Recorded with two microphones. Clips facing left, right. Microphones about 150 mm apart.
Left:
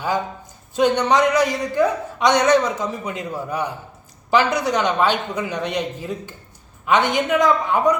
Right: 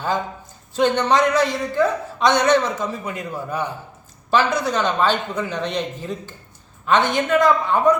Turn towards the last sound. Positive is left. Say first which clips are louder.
# right 1 dB
turn(degrees=15)  # may be behind; listen again after turning